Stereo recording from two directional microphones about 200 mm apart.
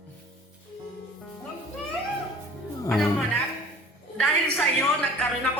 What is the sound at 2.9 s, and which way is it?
Speech, centre (ahead or behind).